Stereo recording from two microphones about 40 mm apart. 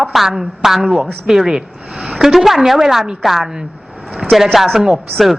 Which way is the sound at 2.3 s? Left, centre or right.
Centre.